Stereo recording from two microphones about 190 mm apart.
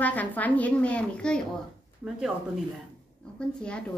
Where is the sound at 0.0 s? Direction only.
10° left (ahead or behind).